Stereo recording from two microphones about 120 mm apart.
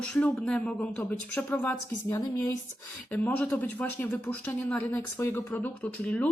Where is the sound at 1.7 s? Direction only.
25° left (ahead or behind).